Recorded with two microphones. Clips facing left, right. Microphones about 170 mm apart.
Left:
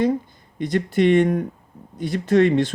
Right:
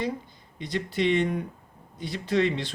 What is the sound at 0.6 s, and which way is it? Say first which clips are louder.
Speech: left 8 dB; 50° left (ahead or behind).